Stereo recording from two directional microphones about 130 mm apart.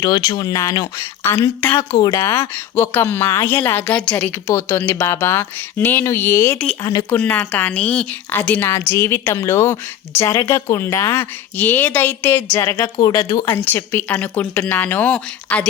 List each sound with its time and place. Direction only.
0.0 s a woman's voice: 30° left (ahead or behind)
13.5 s a woman's voice: 15° left (ahead or behind)